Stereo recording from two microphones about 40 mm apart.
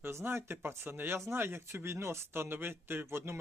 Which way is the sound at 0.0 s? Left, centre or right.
Right.